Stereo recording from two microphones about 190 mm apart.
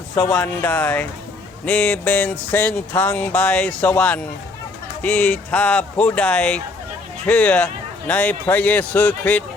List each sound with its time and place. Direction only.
0.2 s music: 5° left (ahead or behind)